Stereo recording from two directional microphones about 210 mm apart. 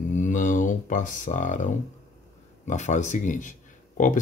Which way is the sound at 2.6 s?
35° left (ahead or behind).